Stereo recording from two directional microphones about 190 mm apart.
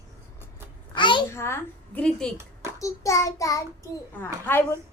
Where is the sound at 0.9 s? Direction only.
25° left (ahead or behind).